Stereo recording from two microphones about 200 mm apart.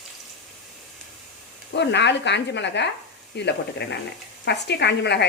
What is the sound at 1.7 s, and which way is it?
A woman's voice, 60° left (ahead or behind).